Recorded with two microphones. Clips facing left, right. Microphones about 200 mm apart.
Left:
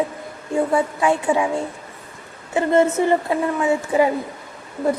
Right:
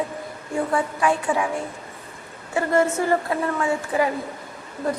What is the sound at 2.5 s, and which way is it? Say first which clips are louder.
Speech: left 4 dB; 20° left (ahead or behind).